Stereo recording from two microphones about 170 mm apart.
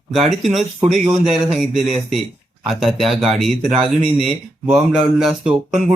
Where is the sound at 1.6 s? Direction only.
Centre (ahead or behind).